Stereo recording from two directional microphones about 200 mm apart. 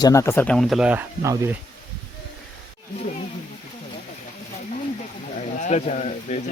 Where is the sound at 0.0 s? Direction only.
15° left (ahead or behind); by 1.5 s 15° right (ahead or behind).